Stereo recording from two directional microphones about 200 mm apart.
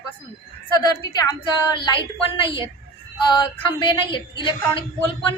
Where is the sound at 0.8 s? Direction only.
20° left (ahead or behind).